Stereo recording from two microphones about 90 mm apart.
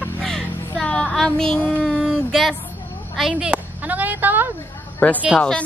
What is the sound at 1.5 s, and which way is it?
Speech, 20° left (ahead or behind).